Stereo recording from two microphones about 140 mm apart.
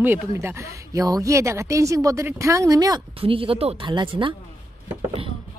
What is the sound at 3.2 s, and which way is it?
A woman's voice, 40° right (ahead or behind).